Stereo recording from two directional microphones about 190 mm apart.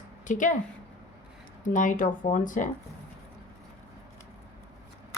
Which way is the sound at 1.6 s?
45° left (ahead or behind).